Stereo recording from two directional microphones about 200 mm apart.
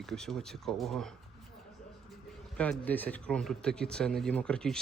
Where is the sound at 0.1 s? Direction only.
Centre (ahead or behind).